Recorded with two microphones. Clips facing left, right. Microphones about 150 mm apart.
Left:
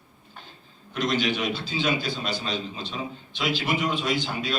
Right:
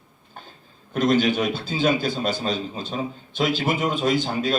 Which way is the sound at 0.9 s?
50° right (ahead or behind).